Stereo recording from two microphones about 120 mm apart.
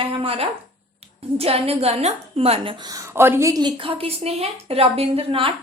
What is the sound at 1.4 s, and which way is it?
A woman's voice, 55° right (ahead or behind).